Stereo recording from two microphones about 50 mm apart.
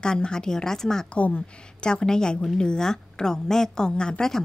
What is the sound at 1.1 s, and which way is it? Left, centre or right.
A woman's voice, left.